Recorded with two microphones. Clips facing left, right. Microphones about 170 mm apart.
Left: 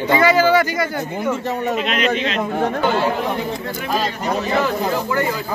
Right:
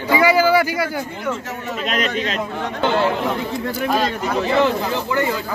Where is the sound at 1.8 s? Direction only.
40° right (ahead or behind).